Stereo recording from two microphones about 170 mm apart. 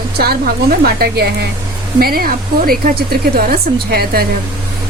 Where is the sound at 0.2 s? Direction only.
65° right (ahead or behind).